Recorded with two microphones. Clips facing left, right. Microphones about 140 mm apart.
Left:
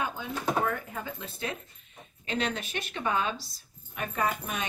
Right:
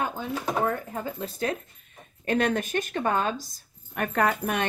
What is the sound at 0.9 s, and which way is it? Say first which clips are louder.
Speech: right 6 dB; 40° right (ahead or behind).